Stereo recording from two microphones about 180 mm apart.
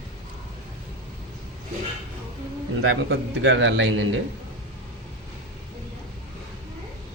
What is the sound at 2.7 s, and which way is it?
A man's voice, 80° right.